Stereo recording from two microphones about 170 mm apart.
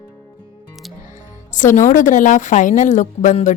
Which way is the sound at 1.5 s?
45° left (ahead or behind).